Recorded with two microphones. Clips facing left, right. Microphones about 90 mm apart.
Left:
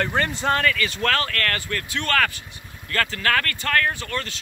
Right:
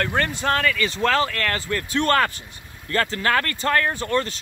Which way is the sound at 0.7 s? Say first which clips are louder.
Right 3 dB; 20° right (ahead or behind).